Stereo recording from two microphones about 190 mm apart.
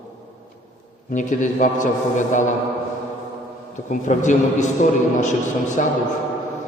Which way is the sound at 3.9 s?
40° left (ahead or behind).